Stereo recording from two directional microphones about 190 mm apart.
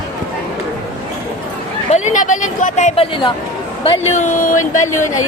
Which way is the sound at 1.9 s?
40° left (ahead or behind).